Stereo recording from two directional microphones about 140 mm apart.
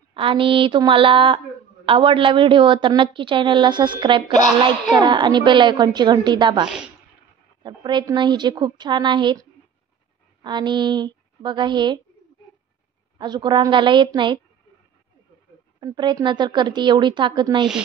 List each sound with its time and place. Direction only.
0.1 s a woman's voice: 40° right (ahead or behind)
13.2 s a woman's voice: 35° right (ahead or behind)
15.8 s a woman's voice: 30° right (ahead or behind)